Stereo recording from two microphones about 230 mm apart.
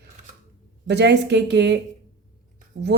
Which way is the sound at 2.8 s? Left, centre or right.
Right.